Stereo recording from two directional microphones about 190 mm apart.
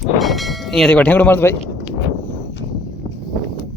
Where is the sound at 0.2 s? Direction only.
Centre (ahead or behind).